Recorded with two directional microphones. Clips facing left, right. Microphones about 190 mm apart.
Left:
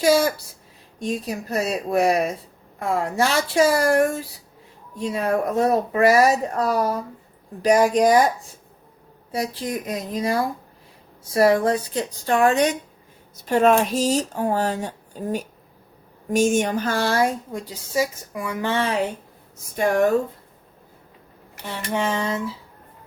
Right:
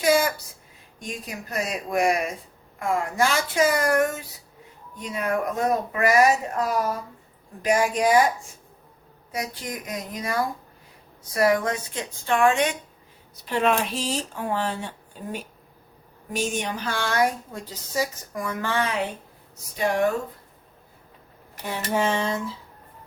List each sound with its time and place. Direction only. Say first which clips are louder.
0.9 s speech: left 9 dB; 30° left (ahead or behind)
9.3 s speech: left 6 dB; 30° left (ahead or behind)
17.5 s speech: left 5 dB; 15° left (ahead or behind)
18.7 s speech: left 3 dB; 30° left (ahead or behind)
19.7 s speech: left 4 dB; 45° left (ahead or behind)
21.8 s a sound: even; centre (ahead or behind)